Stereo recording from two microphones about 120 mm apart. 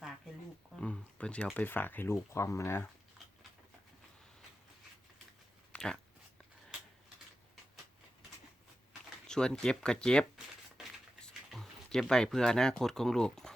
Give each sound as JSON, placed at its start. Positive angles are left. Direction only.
{"t": 0.8, "sound": "a sound", "side_deg": 10}
{"t": 1.5, "sound": "speech", "side_deg": 15}
{"t": 5.7, "sound": "dog", "side_deg": 5}
{"t": 8.9, "sound": "speech", "side_deg": 5}